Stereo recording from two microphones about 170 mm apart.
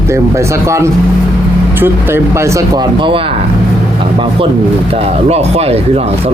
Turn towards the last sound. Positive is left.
turn(degrees=-35)  # may be behind; listen again after turning